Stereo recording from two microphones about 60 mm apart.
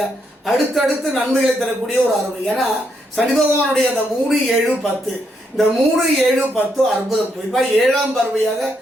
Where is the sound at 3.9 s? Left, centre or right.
Centre.